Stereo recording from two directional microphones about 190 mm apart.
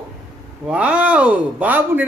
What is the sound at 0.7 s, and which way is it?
Speech, 5° right (ahead or behind).